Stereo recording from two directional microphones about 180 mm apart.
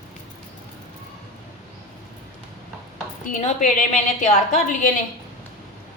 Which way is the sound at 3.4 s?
45° left (ahead or behind).